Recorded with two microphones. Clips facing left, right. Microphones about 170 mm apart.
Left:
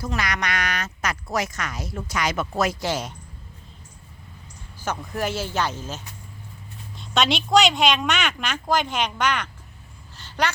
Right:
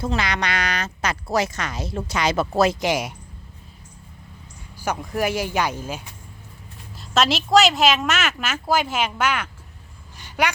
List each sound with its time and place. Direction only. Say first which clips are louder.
0.0 s speech: right 3 dB; 30° right (ahead or behind)
2.8 s speech: right 4 dB; 10° right (ahead or behind)
4.8 s a woman's voice: right 3 dB; 10° right (ahead or behind)
10.2 s a sound: right 2 dB; 10° right (ahead or behind)